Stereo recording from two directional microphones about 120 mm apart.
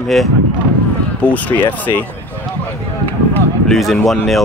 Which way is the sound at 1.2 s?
15° left (ahead or behind).